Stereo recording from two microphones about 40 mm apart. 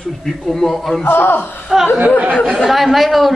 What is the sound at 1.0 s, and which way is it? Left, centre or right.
Speech, left.